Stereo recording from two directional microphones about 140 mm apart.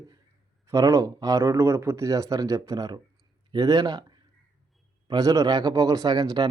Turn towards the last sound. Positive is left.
turn(degrees=-30)  # may be behind; listen again after turning